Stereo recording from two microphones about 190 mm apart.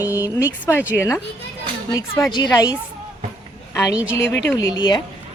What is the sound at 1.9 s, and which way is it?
Speech, 15° left (ahead or behind).